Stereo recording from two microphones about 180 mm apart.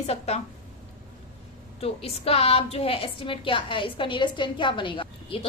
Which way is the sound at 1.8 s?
35° left (ahead or behind).